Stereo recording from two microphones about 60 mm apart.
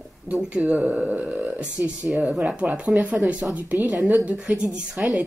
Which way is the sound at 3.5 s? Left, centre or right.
Right.